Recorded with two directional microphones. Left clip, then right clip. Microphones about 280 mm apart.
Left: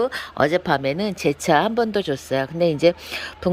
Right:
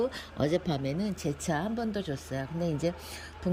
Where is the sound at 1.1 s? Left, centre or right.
Left.